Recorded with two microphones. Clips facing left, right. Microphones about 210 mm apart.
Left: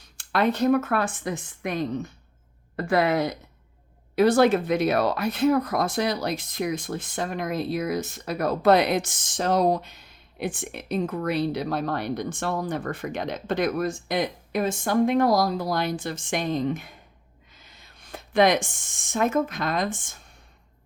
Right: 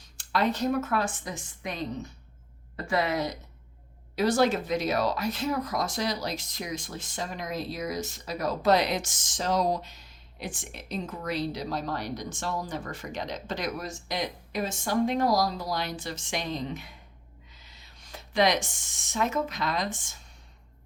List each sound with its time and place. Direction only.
0.2 s speech: 60° left (ahead or behind)